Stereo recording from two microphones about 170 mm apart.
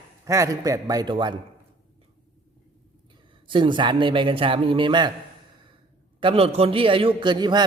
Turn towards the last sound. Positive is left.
turn(degrees=-25)  # may be behind; listen again after turning